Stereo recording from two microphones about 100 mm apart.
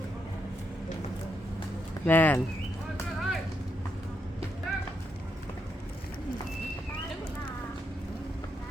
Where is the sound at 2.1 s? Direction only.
20° left (ahead or behind).